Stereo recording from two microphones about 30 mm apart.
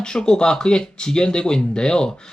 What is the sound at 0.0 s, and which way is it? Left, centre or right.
Speech, left.